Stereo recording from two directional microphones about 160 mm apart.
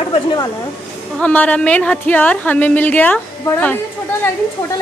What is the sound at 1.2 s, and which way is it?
Speech, 10° left (ahead or behind).